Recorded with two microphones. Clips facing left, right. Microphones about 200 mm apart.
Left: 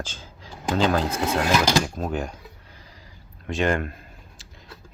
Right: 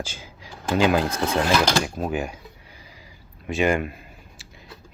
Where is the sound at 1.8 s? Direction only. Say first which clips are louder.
Right 1 dB; 5° right (ahead or behind).